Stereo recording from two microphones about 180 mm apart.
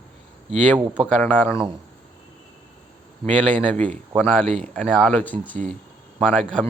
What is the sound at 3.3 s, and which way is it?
Speech, 5° left (ahead or behind).